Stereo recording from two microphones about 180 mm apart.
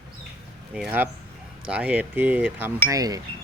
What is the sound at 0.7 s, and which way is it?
Speech, 10° right (ahead or behind).